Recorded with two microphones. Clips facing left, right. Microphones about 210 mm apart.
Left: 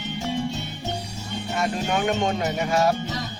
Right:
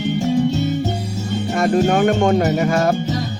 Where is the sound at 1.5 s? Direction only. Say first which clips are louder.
Right 9 dB; 50° right (ahead or behind).